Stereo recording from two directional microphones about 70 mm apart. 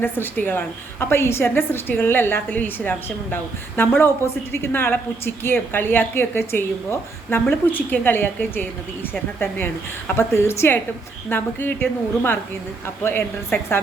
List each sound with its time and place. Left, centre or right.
0.0 s a woman's voice: left
10.2 s a woman's voice: left